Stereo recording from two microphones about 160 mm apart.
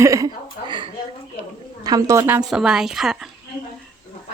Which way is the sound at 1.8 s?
20° right (ahead or behind).